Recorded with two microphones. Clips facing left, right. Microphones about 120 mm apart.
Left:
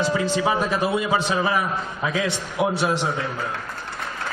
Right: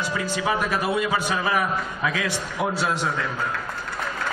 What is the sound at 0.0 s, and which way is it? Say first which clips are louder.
A man's voice: left 5 dB; 25° left (ahead or behind).